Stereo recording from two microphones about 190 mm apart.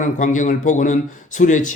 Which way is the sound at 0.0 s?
40° left (ahead or behind).